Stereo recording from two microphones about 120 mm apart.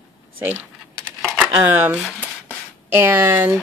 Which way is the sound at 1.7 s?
15° right (ahead or behind).